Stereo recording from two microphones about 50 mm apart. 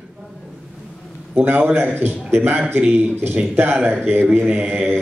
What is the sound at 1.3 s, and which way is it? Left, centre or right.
A man's voice, right.